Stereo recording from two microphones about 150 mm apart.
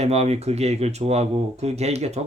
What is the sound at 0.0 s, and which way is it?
Speech, 45° right (ahead or behind).